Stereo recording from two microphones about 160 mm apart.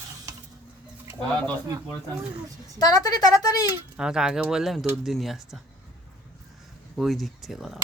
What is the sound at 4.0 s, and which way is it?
Speech, 5° right (ahead or behind).